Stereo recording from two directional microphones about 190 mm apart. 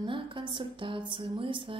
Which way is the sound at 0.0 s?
25° right (ahead or behind).